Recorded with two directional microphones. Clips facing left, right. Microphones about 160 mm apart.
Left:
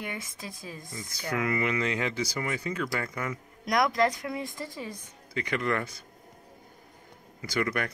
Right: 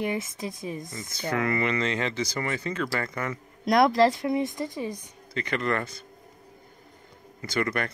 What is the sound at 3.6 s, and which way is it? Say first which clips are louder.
A woman's voice: right 5 dB; 30° right (ahead or behind).